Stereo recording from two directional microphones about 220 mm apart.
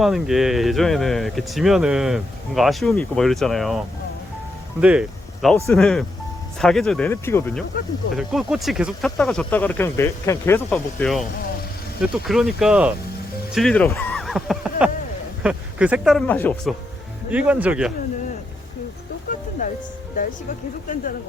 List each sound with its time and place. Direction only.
0.0 s speech: centre (ahead or behind)
4.8 s speech: 5° right (ahead or behind)
8.1 s speech: centre (ahead or behind)
17.3 s speech: 5° right (ahead or behind)
19.6 s music: 35° left (ahead or behind)